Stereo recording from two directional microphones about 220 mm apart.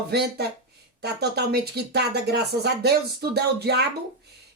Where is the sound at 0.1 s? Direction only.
50° right (ahead or behind).